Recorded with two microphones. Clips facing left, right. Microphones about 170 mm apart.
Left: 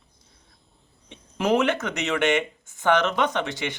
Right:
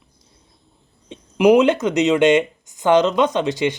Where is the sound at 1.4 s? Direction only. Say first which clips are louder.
Right 9 dB; 15° right (ahead or behind).